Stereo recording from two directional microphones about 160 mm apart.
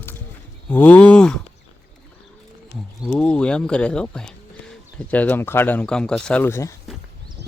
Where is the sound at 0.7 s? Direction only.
10° left (ahead or behind).